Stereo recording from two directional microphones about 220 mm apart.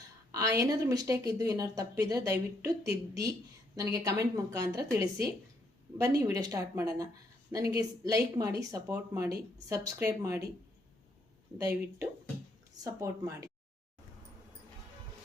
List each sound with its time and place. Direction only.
0.3 s speech: 15° right (ahead or behind)
3.8 s speech: 15° right (ahead or behind)
11.5 s speech: 15° right (ahead or behind)